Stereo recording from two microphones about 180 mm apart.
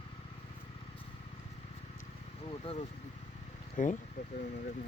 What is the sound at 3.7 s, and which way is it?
Speech, 45° left (ahead or behind).